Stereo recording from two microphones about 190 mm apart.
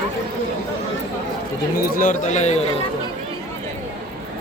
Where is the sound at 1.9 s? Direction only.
45° left (ahead or behind).